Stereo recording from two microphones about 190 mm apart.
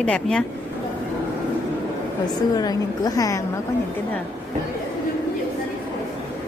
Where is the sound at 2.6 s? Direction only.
20° left (ahead or behind).